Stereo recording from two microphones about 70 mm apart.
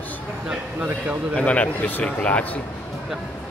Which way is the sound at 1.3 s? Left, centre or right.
Centre.